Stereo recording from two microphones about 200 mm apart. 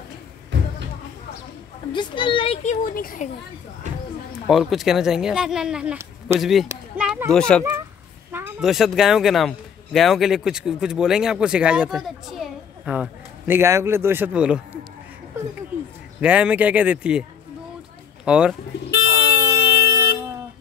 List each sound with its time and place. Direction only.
1.9 s a woman's voice: 25° left (ahead or behind); by 3.3 s 45° left (ahead or behind)
4.3 s speech: centre (ahead or behind)
8.3 s speech: 5° right (ahead or behind)
16.2 s speech: 5° right (ahead or behind)
18.2 s speech: 5° right (ahead or behind)
18.9 s a sound: 55° left (ahead or behind)